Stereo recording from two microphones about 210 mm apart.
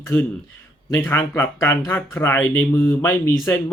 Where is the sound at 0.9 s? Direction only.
10° left (ahead or behind).